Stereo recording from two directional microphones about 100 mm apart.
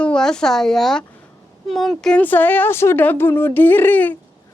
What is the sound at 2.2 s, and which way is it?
Speech, 20° left (ahead or behind).